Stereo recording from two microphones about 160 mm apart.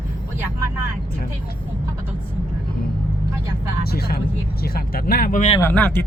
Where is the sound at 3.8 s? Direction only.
75° left (ahead or behind); by 5.5 s 55° left (ahead or behind).